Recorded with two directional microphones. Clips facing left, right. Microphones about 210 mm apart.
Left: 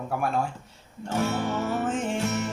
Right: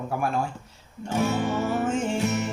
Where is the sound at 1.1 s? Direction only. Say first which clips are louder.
Right 2 dB; 15° right (ahead or behind).